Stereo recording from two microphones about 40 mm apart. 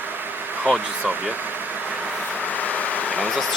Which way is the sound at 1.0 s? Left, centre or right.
Right.